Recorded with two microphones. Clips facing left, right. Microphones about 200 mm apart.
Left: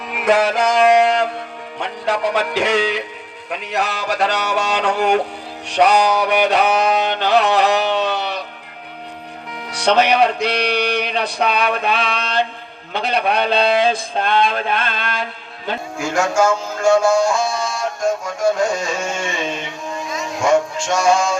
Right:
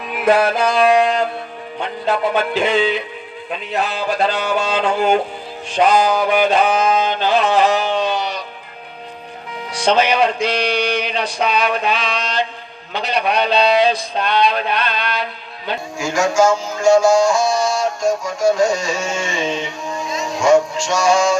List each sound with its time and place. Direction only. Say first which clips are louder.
0.2 s music: right 1 dB; 80° left
2.6 s speech: right 1 dB; 75° left (ahead or behind)
5.6 s music: even; 70° left (ahead or behind)
9.6 s music: even; 65° left (ahead or behind)
12.9 s a sound: even; 55° left (ahead or behind)
16.8 s music: right 2 dB; 55° left (ahead or behind)
20.4 s music: right 3 dB; 55° left (ahead or behind)